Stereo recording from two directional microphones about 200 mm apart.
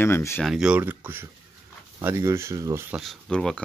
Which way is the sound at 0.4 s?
Centre (ahead or behind).